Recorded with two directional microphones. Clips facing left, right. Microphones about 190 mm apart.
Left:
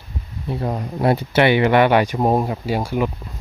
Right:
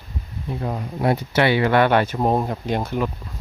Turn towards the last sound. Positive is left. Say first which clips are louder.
# left 2 dB
turn(degrees=10)  # may be behind; listen again after turning